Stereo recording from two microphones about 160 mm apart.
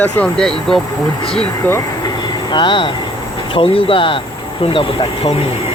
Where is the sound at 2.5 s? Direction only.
30° left (ahead or behind).